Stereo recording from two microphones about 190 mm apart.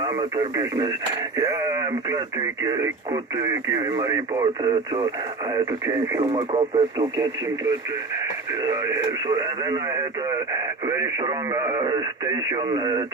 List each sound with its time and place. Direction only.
0.0 s speech: 25° right (ahead or behind)
6.3 s speech: 25° right (ahead or behind)
8.6 s speech: 20° right (ahead or behind)